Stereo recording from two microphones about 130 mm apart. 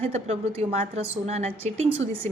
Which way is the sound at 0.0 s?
50° right (ahead or behind).